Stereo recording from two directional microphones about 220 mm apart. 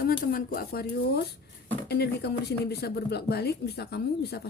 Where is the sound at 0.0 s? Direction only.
40° left (ahead or behind).